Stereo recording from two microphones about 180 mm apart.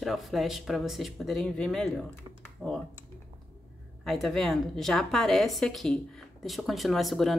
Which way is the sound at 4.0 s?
Centre (ahead or behind).